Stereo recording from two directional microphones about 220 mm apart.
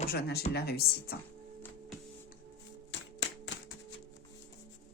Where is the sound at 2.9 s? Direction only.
55° left (ahead or behind).